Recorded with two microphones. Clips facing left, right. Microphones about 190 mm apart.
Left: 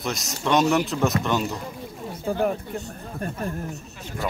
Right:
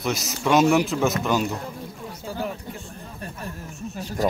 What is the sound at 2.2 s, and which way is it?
Speech, 55° left (ahead or behind).